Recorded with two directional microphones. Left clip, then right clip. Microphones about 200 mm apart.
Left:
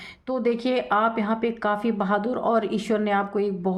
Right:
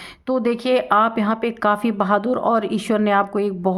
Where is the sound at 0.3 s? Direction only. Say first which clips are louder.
Right 5 dB; 30° right (ahead or behind).